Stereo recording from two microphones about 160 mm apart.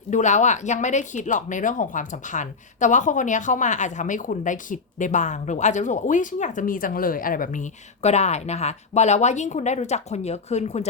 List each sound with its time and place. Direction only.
0.1 s speech: 50° left (ahead or behind)